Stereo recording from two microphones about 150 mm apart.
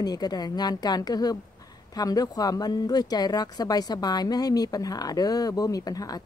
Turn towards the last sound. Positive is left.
turn(degrees=25)  # may be behind; listen again after turning